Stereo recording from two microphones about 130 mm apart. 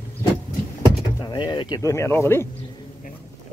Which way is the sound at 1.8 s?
20° left (ahead or behind).